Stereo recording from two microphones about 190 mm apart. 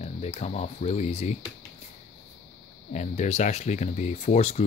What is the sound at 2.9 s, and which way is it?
Speech, 35° left (ahead or behind).